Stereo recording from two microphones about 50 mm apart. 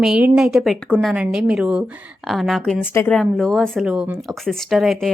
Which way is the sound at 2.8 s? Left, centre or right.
Left.